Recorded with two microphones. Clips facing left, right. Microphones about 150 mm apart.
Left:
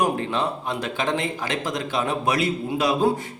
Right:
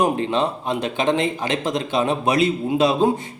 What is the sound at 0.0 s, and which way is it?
A man's voice, 20° right (ahead or behind).